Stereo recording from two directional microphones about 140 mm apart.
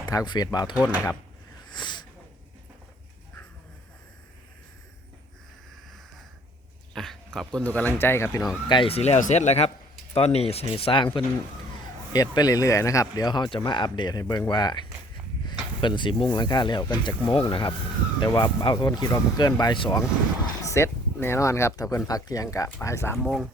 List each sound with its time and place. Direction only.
0.0 s speech: 30° left (ahead or behind)
1.7 s a sound: 30° left (ahead or behind)
6.9 s speech: 5° left (ahead or behind); by 8.4 s 20° left (ahead or behind)
8.7 s speech: 40° left (ahead or behind)
15.4 s a sound: 35° left (ahead or behind)
16.3 s speech: 30° left (ahead or behind)
20.7 s speech: 20° left (ahead or behind)
23.1 s speech: centre (ahead or behind)